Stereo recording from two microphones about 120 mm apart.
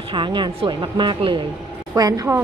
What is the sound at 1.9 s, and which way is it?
Speech, 30° right (ahead or behind).